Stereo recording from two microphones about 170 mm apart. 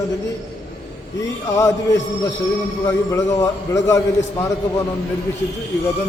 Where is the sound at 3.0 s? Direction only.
15° left (ahead or behind).